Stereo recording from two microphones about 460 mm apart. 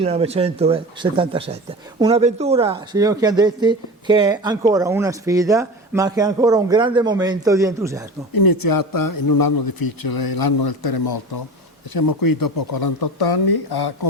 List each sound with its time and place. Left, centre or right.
0.0 s speech: centre
8.3 s a man's voice: left